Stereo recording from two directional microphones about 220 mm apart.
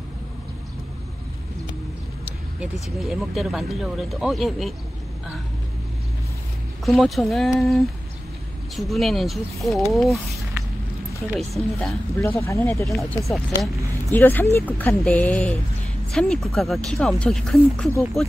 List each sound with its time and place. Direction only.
2.2 s speech: 5° right (ahead or behind)
6.9 s speech: centre (ahead or behind)
12.2 s speech: 10° left (ahead or behind)
13.2 s speech: centre (ahead or behind)